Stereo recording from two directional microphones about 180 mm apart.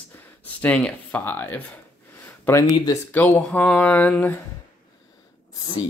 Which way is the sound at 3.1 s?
10° left (ahead or behind).